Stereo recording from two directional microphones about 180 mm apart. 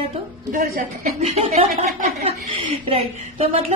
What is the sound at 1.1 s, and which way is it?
A woman's voice, 35° right (ahead or behind).